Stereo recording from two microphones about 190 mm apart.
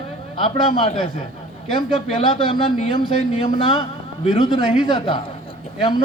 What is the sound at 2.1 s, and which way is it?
A man's voice, 30° left (ahead or behind).